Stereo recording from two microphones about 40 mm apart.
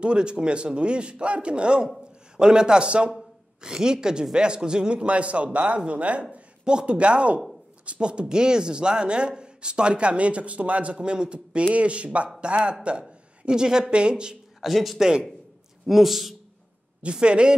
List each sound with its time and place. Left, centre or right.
0.0 s speech: right
6.6 s speech: right
14.6 s a man's voice: centre
17.0 s speech: right